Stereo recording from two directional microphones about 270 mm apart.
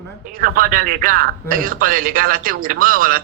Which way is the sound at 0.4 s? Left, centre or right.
Right.